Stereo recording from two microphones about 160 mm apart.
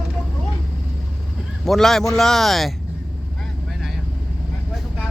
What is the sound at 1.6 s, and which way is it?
Speech, centre (ahead or behind).